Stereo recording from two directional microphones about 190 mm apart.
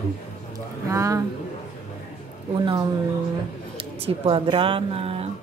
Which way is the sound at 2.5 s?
25° right (ahead or behind).